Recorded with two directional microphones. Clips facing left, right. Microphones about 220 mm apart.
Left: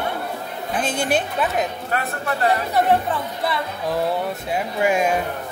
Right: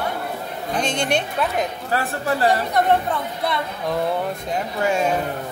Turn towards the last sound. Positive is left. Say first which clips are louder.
# left 1 dB
turn(degrees=15)  # may be behind; listen again after turning